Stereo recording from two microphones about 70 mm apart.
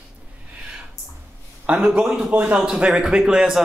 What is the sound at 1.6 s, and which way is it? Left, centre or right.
Speech, centre.